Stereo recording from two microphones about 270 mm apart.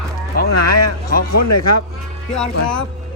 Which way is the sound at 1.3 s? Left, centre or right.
Left.